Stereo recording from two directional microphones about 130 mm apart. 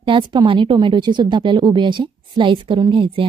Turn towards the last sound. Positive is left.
turn(degrees=-40)  # may be behind; listen again after turning